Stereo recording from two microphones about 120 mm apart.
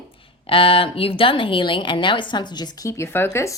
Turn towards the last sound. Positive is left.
turn(degrees=20)  # may be behind; listen again after turning